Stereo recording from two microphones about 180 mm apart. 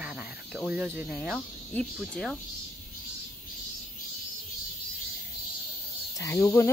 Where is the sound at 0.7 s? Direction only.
10° right (ahead or behind).